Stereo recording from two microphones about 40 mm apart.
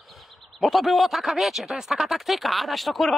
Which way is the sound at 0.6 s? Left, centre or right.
Centre.